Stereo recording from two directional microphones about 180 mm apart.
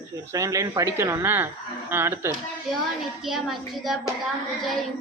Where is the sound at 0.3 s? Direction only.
15° right (ahead or behind).